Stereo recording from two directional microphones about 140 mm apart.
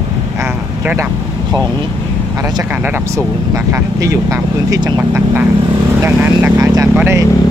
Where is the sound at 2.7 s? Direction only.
10° right (ahead or behind); by 5.0 s 30° right (ahead or behind).